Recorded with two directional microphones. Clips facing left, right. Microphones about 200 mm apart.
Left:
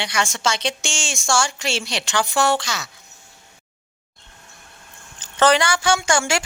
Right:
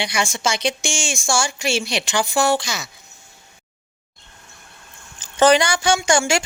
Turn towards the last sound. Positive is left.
turn(degrees=-15)  # may be behind; listen again after turning